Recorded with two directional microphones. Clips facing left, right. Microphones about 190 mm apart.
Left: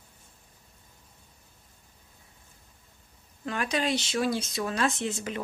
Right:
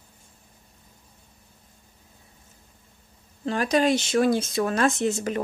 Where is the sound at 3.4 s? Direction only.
40° right (ahead or behind).